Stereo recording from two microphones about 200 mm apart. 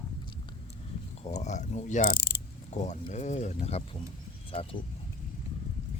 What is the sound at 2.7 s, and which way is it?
Speech, 35° left (ahead or behind).